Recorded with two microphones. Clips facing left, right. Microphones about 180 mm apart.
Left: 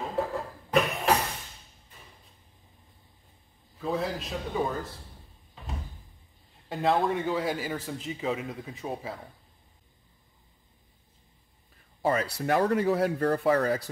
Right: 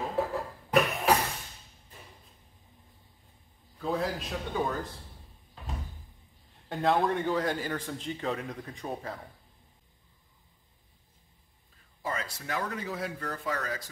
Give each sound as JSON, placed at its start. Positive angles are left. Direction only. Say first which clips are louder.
{"t": 0.0, "sound": "a sound", "louder": "even", "side_deg": 0}
{"t": 3.7, "sound": "a man's voice", "louder": "left 1 dB", "side_deg": 0}
{"t": 6.7, "sound": "a man's voice", "louder": "left 1 dB", "side_deg": 0}
{"t": 12.0, "sound": "speech", "louder": "left 9 dB", "side_deg": 70}